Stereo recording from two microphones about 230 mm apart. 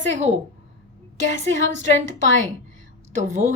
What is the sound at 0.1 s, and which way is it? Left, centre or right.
A child's voice, right.